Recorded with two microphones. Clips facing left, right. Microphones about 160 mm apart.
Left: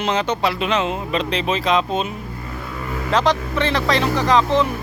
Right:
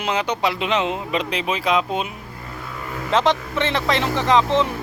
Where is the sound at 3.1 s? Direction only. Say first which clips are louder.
Even; 25° right (ahead or behind).